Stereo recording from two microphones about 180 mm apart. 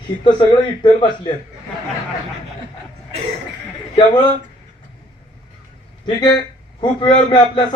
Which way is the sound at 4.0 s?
25° left (ahead or behind).